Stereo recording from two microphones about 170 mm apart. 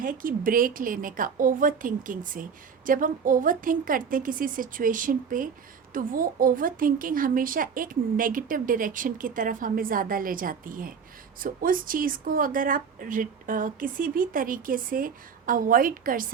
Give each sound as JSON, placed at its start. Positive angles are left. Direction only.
{"t": 0.0, "sound": "a woman's voice", "side_deg": -55}